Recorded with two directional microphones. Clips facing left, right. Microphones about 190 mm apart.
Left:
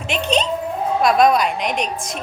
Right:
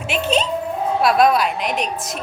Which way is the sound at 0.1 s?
5° right (ahead or behind).